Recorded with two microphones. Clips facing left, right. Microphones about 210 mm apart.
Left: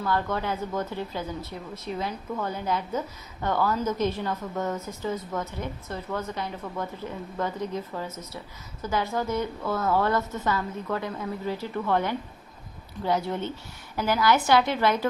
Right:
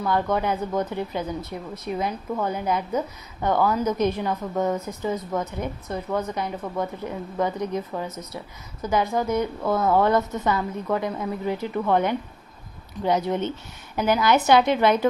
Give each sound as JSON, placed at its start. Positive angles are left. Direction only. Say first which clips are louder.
{"t": 0.0, "sound": "a woman's voice", "louder": "right 4 dB", "side_deg": -15}